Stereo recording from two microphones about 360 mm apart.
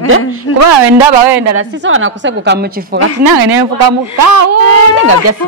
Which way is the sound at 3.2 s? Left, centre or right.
Right.